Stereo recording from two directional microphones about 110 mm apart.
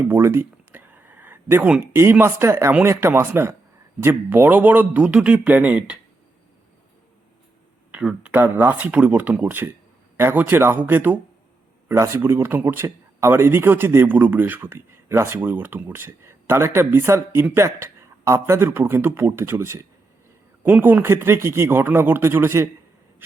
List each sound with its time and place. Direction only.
0.1 s a sound: 20° right (ahead or behind)
1.8 s a man's voice: 20° right (ahead or behind)
7.9 s a man's voice: 10° right (ahead or behind)